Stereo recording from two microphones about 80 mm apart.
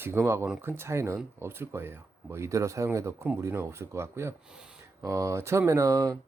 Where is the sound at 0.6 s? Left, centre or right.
Right.